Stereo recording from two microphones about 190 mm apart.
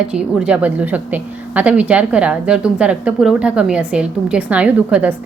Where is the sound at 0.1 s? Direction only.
5° right (ahead or behind).